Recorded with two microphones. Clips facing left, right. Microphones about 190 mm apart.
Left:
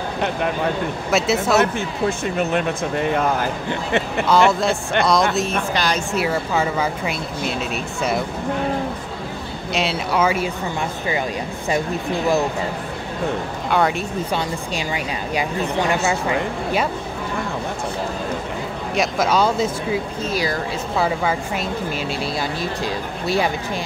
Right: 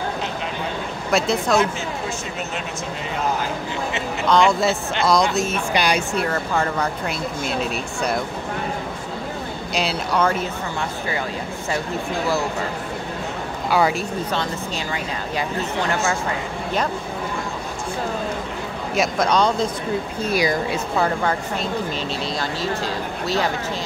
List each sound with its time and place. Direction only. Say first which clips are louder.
1.1 s speech: left 1 dB; 5° left (ahead or behind)
1.6 s speech: left 3 dB; 55° left (ahead or behind)
4.3 s speech: left 1 dB; 5° left (ahead or behind)
5.7 s speech: right 1 dB; 10° right (ahead or behind)
6.1 s speech: left 1 dB; 5° left (ahead or behind)
9.8 s speech: left 1 dB; 5° left (ahead or behind)
13.7 s speech: even; centre (ahead or behind)
18.9 s speech: even; 5° left (ahead or behind)
20.2 s speech: right 4 dB; 15° right (ahead or behind)
20.9 s speech: left 2 dB; 5° left (ahead or behind)